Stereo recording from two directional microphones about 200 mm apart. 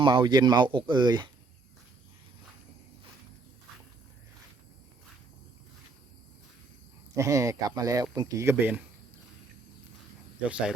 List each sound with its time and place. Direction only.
0.0 s speech: 25° right (ahead or behind)
7.2 s speech: 15° right (ahead or behind)
10.5 s speech: 5° right (ahead or behind)